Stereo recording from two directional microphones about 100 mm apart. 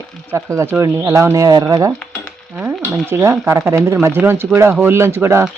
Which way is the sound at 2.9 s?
25° right (ahead or behind).